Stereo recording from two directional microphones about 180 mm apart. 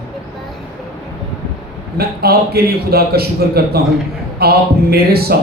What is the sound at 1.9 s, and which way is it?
A man's voice, 60° right (ahead or behind).